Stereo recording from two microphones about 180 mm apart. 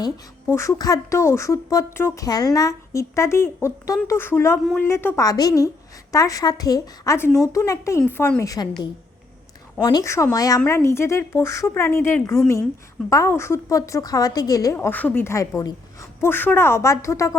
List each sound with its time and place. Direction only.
0.0 s speech: 15° left (ahead or behind)
9.8 s speech: 20° left (ahead or behind)